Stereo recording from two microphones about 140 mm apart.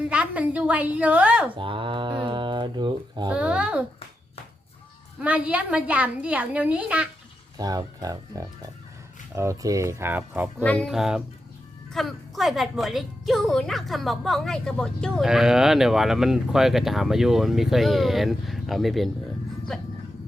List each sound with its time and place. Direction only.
0.1 s a woman's voice: 10° right (ahead or behind)
1.5 s speech: 35° right (ahead or behind)
3.2 s a woman's voice: 10° right (ahead or behind)
5.2 s a woman's voice: 10° right (ahead or behind)
7.6 s speech: 25° right (ahead or behind)
10.6 s speech: 10° left (ahead or behind)
10.8 s a woman's voice: 5° right (ahead or behind)